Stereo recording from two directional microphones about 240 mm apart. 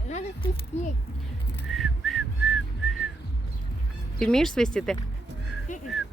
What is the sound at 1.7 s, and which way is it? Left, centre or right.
Whistling, centre.